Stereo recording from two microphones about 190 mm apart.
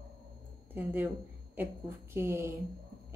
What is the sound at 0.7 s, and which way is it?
Speech, 10° right (ahead or behind).